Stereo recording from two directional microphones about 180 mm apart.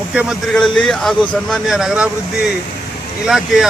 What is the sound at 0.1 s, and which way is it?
A man's voice, 5° right (ahead or behind).